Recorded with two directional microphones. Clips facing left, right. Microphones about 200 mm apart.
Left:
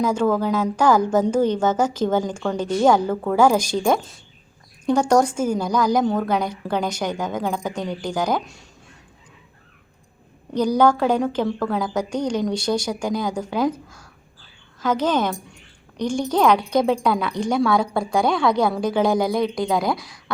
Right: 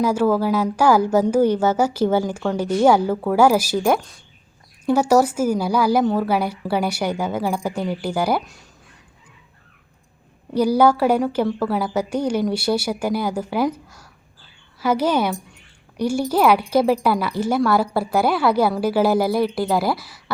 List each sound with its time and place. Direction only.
0.0 s speech: 10° right (ahead or behind)
10.5 s speech: 10° right (ahead or behind)
13.8 s crow: 5° right (ahead or behind)
14.8 s speech: 10° right (ahead or behind)